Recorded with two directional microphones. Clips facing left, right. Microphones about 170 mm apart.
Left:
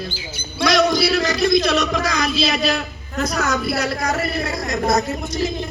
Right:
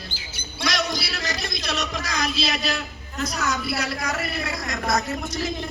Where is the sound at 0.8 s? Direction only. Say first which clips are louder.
Left 11 dB; 65° left (ahead or behind); by 5.0 s 25° left (ahead or behind).